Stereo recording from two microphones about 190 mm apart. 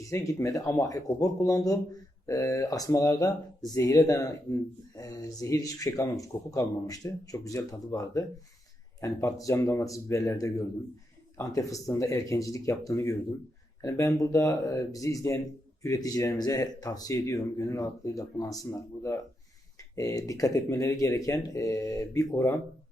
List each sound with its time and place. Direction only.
0.0 s speech: 15° left (ahead or behind)